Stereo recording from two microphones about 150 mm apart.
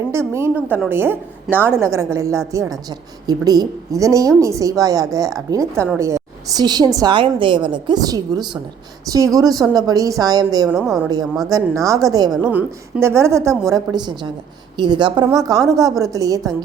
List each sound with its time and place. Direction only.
0.1 s a woman's voice: 20° right (ahead or behind)
10.7 s a woman's voice: centre (ahead or behind)
11.4 s a woman's voice: 20° right (ahead or behind)